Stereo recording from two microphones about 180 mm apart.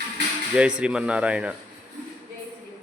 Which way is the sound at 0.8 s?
5° right (ahead or behind).